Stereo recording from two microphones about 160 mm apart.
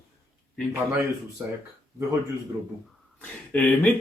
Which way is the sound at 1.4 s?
10° right (ahead or behind).